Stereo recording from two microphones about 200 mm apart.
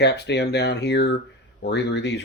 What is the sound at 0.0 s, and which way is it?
Speech, 60° left (ahead or behind).